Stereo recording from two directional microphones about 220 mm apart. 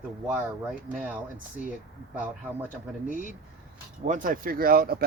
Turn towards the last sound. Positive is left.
turn(degrees=-40)  # may be behind; listen again after turning